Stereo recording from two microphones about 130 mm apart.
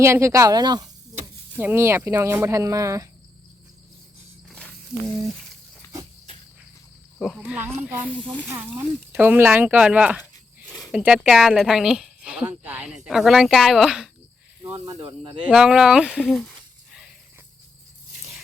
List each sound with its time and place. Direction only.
0.0 s speech: 20° right (ahead or behind)
1.5 s speech: 15° right (ahead or behind)
5.3 s a sound: centre (ahead or behind)
7.2 s speech: 5° right (ahead or behind)
14.8 s speech: 30° right (ahead or behind)
15.4 s speech: 5° right (ahead or behind)